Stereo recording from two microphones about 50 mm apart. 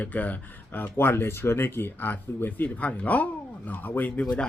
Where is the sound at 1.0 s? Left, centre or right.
Left.